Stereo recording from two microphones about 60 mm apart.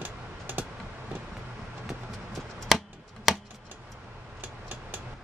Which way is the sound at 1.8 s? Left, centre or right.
Centre.